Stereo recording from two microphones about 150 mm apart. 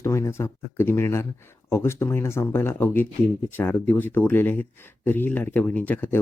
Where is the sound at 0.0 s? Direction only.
20° left (ahead or behind).